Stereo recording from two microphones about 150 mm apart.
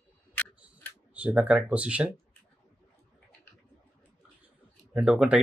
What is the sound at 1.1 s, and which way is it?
Speech, 10° right (ahead or behind).